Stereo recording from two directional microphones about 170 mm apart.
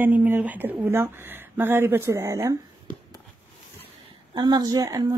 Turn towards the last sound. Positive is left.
turn(degrees=-20)  # may be behind; listen again after turning